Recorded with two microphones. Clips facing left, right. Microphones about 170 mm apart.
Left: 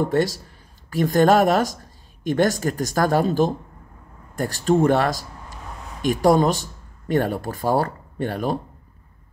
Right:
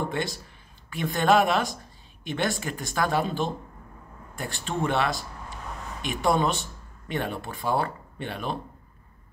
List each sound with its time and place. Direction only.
0.1 s speech: 40° left (ahead or behind)